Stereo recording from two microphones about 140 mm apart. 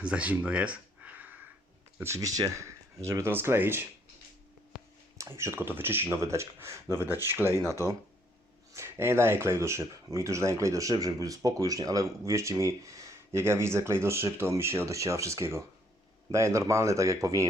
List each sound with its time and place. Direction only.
0.0 s speech: 10° right (ahead or behind)
2.0 s speech: 20° right (ahead or behind)
5.4 s speech: 15° right (ahead or behind)